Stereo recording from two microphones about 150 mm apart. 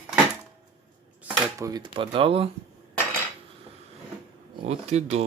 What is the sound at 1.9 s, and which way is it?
Speech, 35° right (ahead or behind).